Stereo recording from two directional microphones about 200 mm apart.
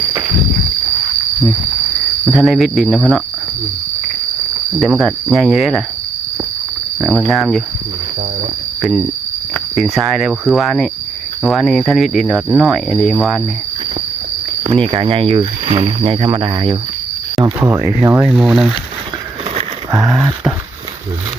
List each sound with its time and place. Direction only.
2.2 s speech: centre (ahead or behind)
5.3 s speech: 5° right (ahead or behind)
7.0 s speech: centre (ahead or behind)
9.7 s speech: centre (ahead or behind)
14.7 s speech: 25° right (ahead or behind)
17.6 s speech: 10° right (ahead or behind)
19.9 s speech: 20° right (ahead or behind)